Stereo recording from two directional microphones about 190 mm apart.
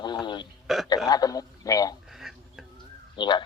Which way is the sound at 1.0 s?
20° left (ahead or behind).